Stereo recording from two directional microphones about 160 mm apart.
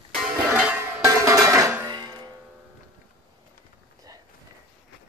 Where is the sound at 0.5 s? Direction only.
5° right (ahead or behind).